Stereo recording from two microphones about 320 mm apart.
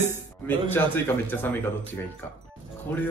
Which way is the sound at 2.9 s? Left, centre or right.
Centre.